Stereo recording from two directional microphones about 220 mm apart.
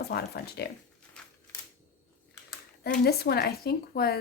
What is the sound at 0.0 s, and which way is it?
Speech, 45° left (ahead or behind).